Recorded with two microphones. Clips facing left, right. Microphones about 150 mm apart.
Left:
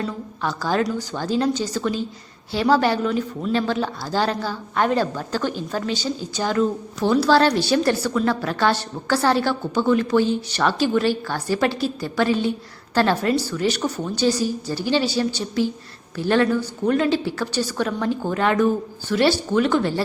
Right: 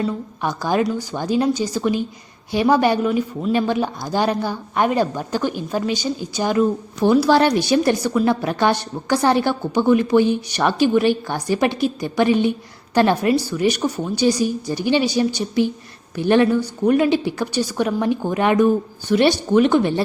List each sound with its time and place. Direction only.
0.0 s a woman's voice: 15° right (ahead or behind)
3.1 s speech: 5° right (ahead or behind)
3.5 s a woman's voice: 15° right (ahead or behind)